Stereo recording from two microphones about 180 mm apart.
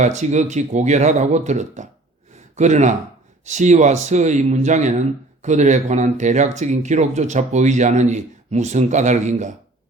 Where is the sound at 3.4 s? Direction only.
40° right (ahead or behind).